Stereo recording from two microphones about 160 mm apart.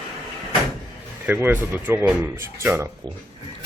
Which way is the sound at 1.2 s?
10° right (ahead or behind).